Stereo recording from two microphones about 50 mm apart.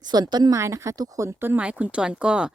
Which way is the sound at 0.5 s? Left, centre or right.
Right.